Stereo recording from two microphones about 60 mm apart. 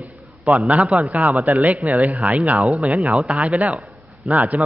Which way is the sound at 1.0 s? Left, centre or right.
Right.